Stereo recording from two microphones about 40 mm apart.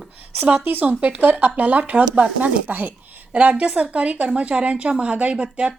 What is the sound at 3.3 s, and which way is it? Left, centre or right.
A woman's voice, right.